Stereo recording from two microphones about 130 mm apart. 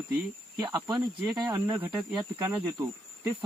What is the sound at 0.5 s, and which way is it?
Speech, 30° right (ahead or behind).